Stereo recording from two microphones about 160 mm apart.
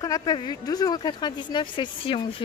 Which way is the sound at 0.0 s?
25° left (ahead or behind).